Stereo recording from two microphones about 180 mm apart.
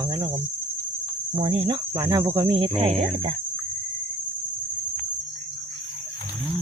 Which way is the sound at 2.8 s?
35° right (ahead or behind).